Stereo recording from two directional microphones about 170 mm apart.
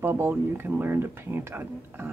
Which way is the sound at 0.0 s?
15° right (ahead or behind).